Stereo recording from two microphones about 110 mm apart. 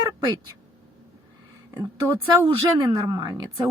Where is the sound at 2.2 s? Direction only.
40° right (ahead or behind).